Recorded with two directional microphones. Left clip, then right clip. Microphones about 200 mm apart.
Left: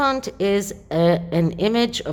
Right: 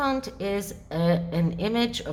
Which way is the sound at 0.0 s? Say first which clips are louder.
Left 7 dB; 40° left (ahead or behind).